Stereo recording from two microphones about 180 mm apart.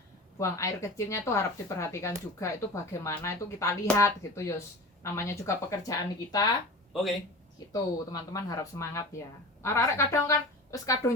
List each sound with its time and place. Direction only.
0.3 s speech: 15° left (ahead or behind)
6.9 s speech: centre (ahead or behind)
7.7 s speech: 20° left (ahead or behind)